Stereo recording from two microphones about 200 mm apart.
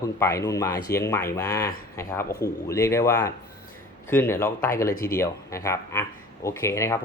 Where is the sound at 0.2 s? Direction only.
15° left (ahead or behind).